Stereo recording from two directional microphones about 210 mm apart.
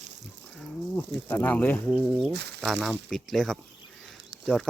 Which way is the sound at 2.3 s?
50° right (ahead or behind).